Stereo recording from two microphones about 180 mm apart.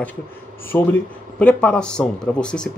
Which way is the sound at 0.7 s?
5° left (ahead or behind).